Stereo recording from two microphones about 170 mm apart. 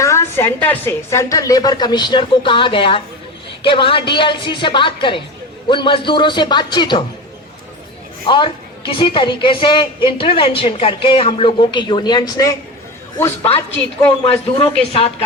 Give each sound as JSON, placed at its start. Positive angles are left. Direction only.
{"t": 0.0, "sound": "a woman's voice", "side_deg": 15}
{"t": 8.3, "sound": "a woman's voice", "side_deg": 30}
{"t": 14.3, "sound": "a woman's voice", "side_deg": 35}